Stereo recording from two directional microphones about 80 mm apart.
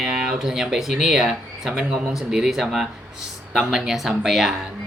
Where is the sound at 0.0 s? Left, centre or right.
Centre.